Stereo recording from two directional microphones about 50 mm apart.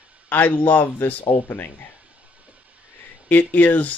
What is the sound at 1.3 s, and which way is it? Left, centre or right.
Speech, left.